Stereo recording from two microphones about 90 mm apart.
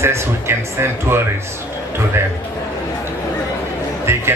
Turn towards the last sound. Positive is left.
turn(degrees=-30)  # may be behind; listen again after turning